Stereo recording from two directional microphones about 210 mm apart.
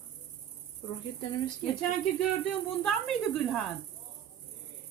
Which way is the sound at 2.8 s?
Centre (ahead or behind).